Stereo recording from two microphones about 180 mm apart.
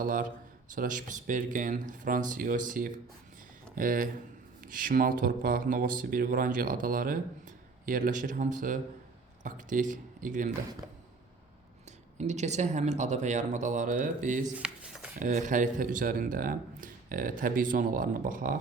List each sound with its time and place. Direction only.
0.0 s a man's voice: 50° right (ahead or behind)
12.1 s speech: 40° right (ahead or behind)
14.6 s a sound: 5° right (ahead or behind)
15.2 s speech: 45° right (ahead or behind)